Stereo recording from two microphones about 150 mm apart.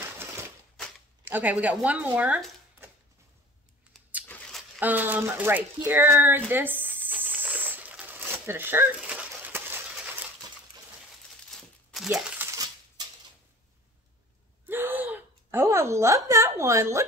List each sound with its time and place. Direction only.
1.2 s speech: 10° right (ahead or behind)
3.9 s vehicle: 5° right (ahead or behind)
4.3 s a sound: centre (ahead or behind)
4.7 s speech: 10° right (ahead or behind)
6.5 s crumpling: 15° right (ahead or behind)
11.9 s crumpling: centre (ahead or behind)
12.4 s coin: 20° right (ahead or behind)
14.7 s gasp: 15° right (ahead or behind)